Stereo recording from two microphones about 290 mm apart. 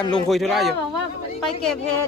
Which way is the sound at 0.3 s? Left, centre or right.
Centre.